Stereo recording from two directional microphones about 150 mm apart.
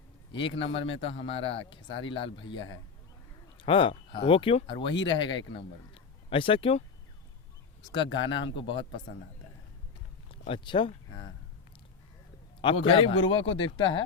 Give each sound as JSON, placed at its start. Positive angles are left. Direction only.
{"t": 0.3, "sound": "a man's voice", "side_deg": 35}
{"t": 7.9, "sound": "a man's voice", "side_deg": 30}
{"t": 10.3, "sound": "speech", "side_deg": 35}
{"t": 12.6, "sound": "a man's voice", "side_deg": 35}